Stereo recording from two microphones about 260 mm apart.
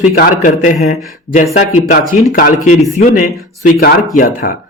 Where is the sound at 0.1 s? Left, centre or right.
Left.